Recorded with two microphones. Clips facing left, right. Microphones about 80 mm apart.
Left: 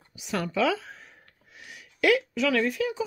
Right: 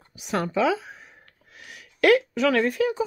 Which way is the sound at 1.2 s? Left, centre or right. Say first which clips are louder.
Right 2 dB; right.